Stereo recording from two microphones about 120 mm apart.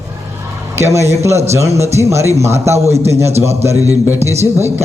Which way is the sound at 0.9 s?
25° right (ahead or behind).